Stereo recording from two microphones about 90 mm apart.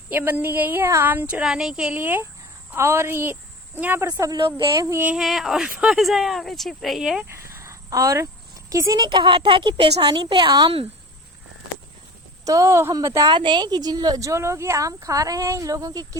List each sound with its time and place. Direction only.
0.1 s a woman's voice: 20° right (ahead or behind)
2.0 s a woman's voice: 20° right (ahead or behind)
4.0 s a woman's voice: 45° right (ahead or behind)
4.9 s a woman's voice: 25° right (ahead or behind)
5.1 s speech: 5° right (ahead or behind)
7.3 s cricket: 30° right (ahead or behind)
9.0 s a woman's voice: 60° right (ahead or behind)
12.5 s speech: 35° right (ahead or behind)
13.3 s speech: 60° right (ahead or behind); by 16.0 s 40° right (ahead or behind)